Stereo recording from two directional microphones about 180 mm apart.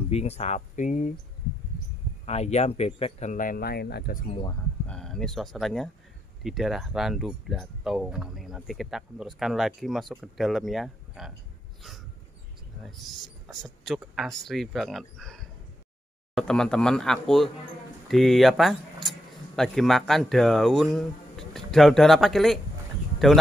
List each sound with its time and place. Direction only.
0.1 s speech: 35° left (ahead or behind)
2.2 s speech: 35° left (ahead or behind); by 4.2 s 60° left (ahead or behind)
4.3 s speech: 25° left (ahead or behind)
4.8 s speech: 5° left (ahead or behind)
12.8 s speech: centre (ahead or behind)